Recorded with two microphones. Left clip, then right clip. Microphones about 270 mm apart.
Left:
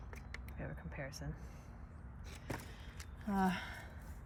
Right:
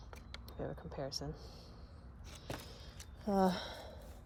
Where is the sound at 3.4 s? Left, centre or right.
Centre.